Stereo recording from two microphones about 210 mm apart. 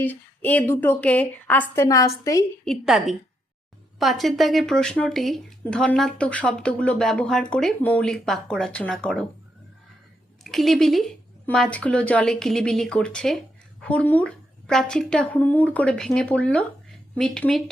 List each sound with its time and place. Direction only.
0.0 s a woman's voice: 10° left (ahead or behind)
2.6 s speech: centre (ahead or behind)
10.4 s speech: centre (ahead or behind)